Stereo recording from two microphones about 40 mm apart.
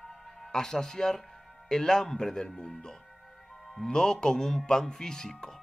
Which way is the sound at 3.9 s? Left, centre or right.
Centre.